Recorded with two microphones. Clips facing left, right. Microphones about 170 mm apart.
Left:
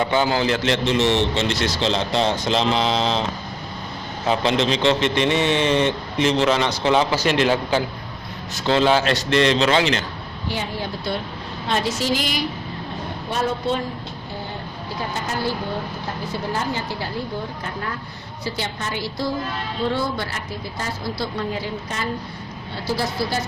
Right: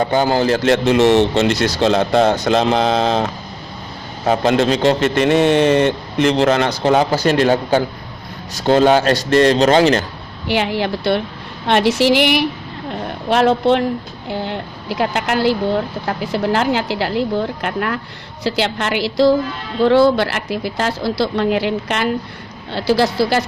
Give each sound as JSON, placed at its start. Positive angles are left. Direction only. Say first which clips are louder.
{"t": 0.0, "sound": "a man's voice", "louder": "right 4 dB", "side_deg": -40}
{"t": 4.3, "sound": "a man's voice", "louder": "right 5 dB", "side_deg": -45}
{"t": 10.5, "sound": "a woman's voice", "louder": "right 10 dB", "side_deg": -85}
{"t": 13.3, "sound": "a woman's voice", "louder": "right 10 dB", "side_deg": -80}